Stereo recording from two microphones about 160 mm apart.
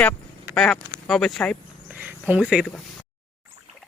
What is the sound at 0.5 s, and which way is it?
Speech, centre (ahead or behind).